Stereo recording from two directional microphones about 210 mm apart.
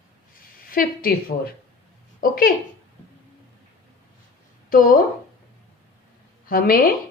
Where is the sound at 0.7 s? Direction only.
45° left (ahead or behind).